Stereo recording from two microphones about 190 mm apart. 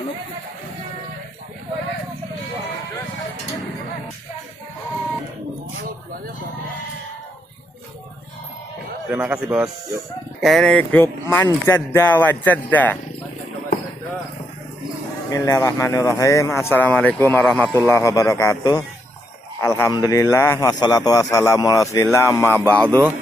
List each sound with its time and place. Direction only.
9.1 s speech: 5° right (ahead or behind)
15.3 s speech: 15° left (ahead or behind)